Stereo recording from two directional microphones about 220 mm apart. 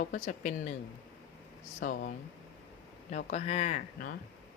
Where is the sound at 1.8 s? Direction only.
40° left (ahead or behind).